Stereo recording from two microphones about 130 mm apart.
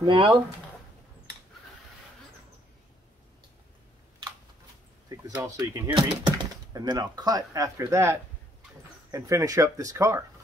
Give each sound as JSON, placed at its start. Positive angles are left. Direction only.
{"t": 0.0, "sound": "speech", "side_deg": -40}
{"t": 5.4, "sound": "speech", "side_deg": -35}